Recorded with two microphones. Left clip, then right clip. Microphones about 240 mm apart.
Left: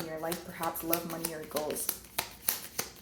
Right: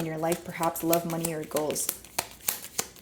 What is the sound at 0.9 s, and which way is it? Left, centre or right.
Shuffling cards, right.